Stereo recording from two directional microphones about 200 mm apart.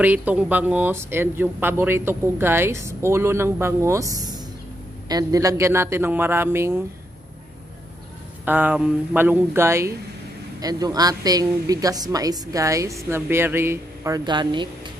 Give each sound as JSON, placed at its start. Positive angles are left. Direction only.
{"t": 0.0, "sound": "speech", "side_deg": -10}
{"t": 8.5, "sound": "speech", "side_deg": -10}